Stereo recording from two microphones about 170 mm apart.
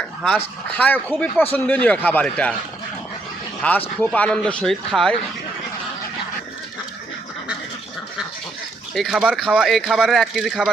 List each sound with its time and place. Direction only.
0.3 s speech: 10° left (ahead or behind)
3.6 s speech: 10° left (ahead or behind)
9.0 s speech: 5° right (ahead or behind)